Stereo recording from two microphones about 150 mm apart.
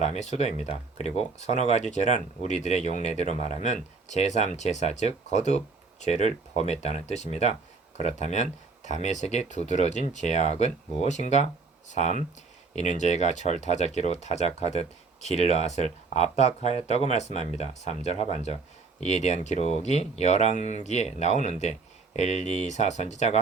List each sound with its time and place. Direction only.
0.0 s speech: 50° left (ahead or behind)